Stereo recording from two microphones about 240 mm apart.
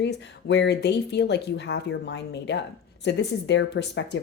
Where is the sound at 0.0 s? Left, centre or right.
Left.